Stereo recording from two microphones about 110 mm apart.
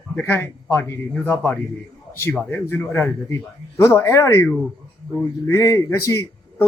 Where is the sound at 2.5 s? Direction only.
20° left (ahead or behind).